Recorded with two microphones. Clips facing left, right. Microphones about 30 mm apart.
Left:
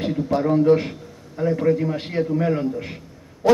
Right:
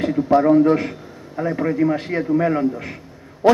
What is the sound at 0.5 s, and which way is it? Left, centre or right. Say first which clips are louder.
A man's voice: right 2 dB; centre.